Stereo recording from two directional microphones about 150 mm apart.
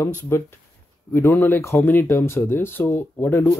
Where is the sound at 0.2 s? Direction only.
15° left (ahead or behind).